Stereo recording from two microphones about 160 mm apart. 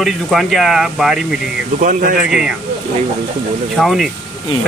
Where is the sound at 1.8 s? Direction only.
55° right (ahead or behind).